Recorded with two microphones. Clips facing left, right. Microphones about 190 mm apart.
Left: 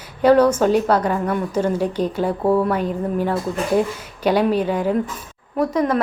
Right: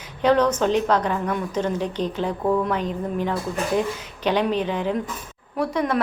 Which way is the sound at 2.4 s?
35° left (ahead or behind).